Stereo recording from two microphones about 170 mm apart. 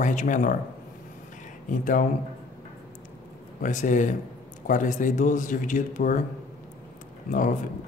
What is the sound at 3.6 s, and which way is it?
A man's voice, 50° left (ahead or behind).